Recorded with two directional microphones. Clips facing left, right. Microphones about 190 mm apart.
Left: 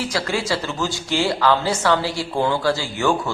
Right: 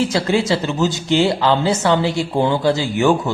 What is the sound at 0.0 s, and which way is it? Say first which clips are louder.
Speech: right 6 dB; 25° right (ahead or behind).